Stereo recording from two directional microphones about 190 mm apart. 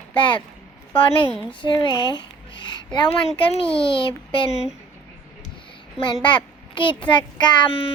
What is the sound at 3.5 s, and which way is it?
Speech, 25° left (ahead or behind).